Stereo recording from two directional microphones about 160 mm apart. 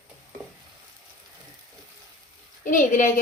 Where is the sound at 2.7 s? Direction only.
55° left (ahead or behind).